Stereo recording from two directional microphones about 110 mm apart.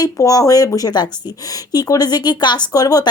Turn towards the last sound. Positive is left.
turn(degrees=35)  # may be behind; listen again after turning